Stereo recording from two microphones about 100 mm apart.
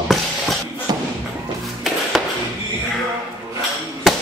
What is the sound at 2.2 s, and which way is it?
Music, 10° right (ahead or behind).